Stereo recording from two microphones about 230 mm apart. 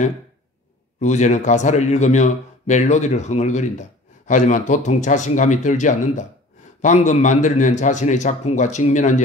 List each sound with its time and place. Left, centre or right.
0.9 s speech: left